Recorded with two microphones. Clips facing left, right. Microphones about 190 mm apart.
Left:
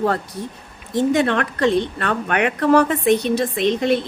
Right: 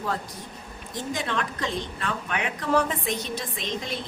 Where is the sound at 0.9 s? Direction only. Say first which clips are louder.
Left 12 dB; 65° left (ahead or behind).